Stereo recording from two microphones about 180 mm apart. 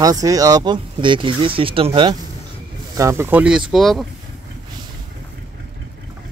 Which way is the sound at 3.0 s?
15° right (ahead or behind).